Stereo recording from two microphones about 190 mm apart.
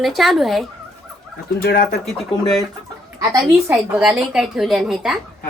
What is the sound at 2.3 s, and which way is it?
Speech, 25° left (ahead or behind).